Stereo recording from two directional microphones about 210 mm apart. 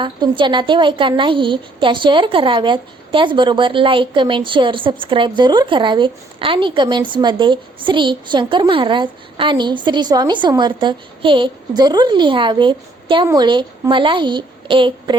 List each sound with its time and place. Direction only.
0.0 s a woman's voice: 20° right (ahead or behind)